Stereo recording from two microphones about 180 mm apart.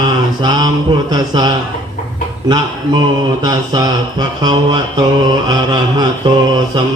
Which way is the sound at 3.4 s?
25° right (ahead or behind).